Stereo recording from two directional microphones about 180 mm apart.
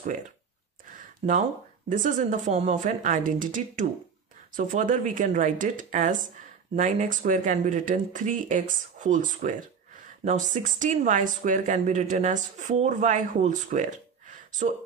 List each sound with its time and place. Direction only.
1.9 s speech: 45° right (ahead or behind)